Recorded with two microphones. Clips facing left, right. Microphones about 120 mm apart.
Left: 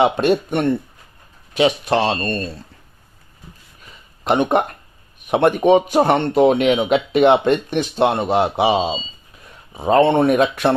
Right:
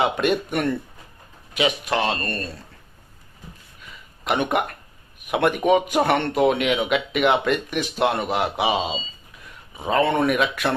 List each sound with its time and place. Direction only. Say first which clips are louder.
0.0 s speech: left 5 dB; 30° left (ahead or behind)
3.8 s a sound: right 1 dB; 35° left (ahead or behind)
5.3 s speech: left 5 dB; 30° left (ahead or behind)